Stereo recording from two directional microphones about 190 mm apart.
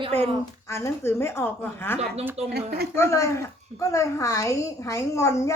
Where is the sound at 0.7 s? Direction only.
15° left (ahead or behind).